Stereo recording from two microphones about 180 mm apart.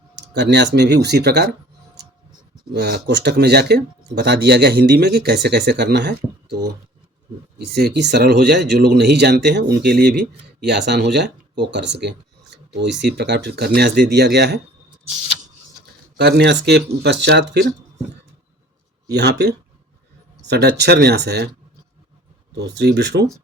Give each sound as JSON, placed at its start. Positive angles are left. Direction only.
{"t": 0.2, "sound": "speech", "side_deg": -70}
{"t": 2.7, "sound": "speech", "side_deg": -60}
{"t": 7.6, "sound": "speech", "side_deg": -65}
{"t": 16.1, "sound": "speech", "side_deg": -65}
{"t": 19.1, "sound": "speech", "side_deg": -65}
{"t": 22.8, "sound": "speech", "side_deg": -70}